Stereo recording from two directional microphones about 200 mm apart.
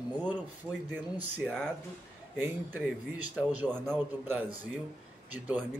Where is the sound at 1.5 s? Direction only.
5° left (ahead or behind).